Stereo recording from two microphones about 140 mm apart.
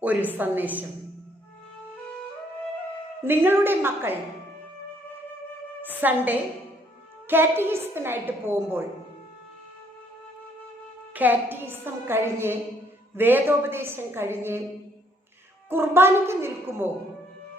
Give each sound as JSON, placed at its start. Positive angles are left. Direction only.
{"t": 0.0, "sound": "a woman's voice", "side_deg": -10}
{"t": 3.2, "sound": "a woman's voice", "side_deg": -15}
{"t": 5.9, "sound": "a woman's voice", "side_deg": -15}
{"t": 11.1, "sound": "a woman's voice", "side_deg": -10}
{"t": 15.7, "sound": "a woman's voice", "side_deg": -15}